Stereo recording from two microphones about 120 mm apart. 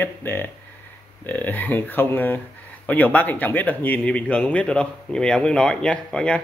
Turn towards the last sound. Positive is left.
turn(degrees=10)  # may be behind; listen again after turning